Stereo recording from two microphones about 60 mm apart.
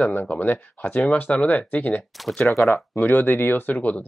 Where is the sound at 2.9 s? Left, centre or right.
Left.